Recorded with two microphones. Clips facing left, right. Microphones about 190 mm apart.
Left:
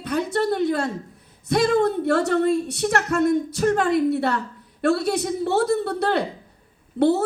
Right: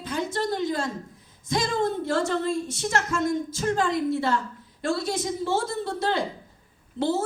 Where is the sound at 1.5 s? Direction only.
65° left (ahead or behind).